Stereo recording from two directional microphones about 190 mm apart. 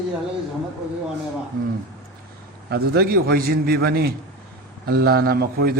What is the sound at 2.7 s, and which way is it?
A man's voice, 55° right (ahead or behind).